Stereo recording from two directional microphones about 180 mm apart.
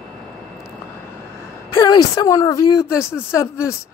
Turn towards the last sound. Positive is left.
turn(degrees=15)  # may be behind; listen again after turning